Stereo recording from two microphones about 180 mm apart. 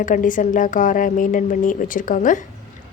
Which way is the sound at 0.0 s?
45° left (ahead or behind).